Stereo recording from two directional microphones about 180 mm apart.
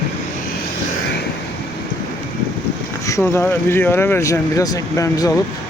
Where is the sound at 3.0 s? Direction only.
15° left (ahead or behind).